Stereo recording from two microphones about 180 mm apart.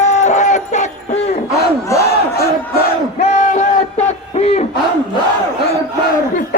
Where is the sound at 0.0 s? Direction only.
40° left (ahead or behind).